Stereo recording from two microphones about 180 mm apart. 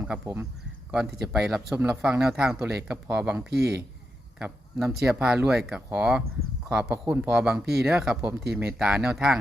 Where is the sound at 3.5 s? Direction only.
65° right (ahead or behind).